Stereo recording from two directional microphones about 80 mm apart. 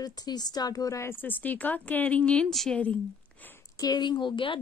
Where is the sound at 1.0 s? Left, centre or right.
Left.